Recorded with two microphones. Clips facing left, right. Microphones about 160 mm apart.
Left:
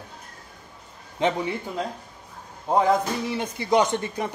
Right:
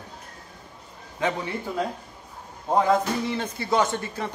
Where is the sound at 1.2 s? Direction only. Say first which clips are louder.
Left 3 dB; 20° left (ahead or behind).